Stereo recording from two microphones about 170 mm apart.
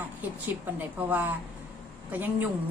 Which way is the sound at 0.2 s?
10° right (ahead or behind).